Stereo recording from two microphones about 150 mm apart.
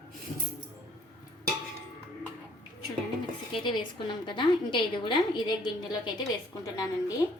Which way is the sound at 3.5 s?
30° left (ahead or behind).